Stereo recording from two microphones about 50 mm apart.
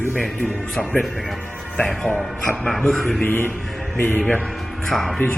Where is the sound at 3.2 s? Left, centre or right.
Left.